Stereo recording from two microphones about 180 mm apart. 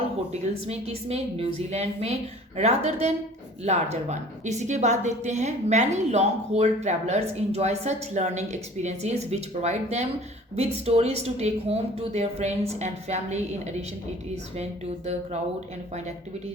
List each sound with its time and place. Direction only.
0.7 s a woman's voice: 35° right (ahead or behind)